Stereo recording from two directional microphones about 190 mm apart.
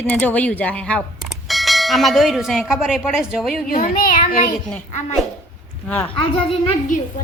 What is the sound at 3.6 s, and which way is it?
Speech, 45° left (ahead or behind).